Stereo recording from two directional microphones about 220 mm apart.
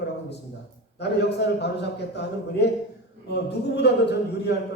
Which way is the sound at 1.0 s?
50° left (ahead or behind).